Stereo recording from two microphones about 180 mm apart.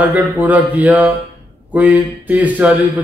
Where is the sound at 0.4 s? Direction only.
10° right (ahead or behind).